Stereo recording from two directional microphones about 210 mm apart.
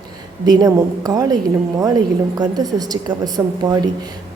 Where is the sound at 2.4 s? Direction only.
20° right (ahead or behind).